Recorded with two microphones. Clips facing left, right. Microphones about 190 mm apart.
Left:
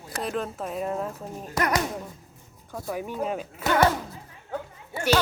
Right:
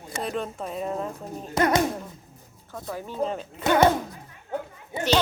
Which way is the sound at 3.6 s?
20° right (ahead or behind).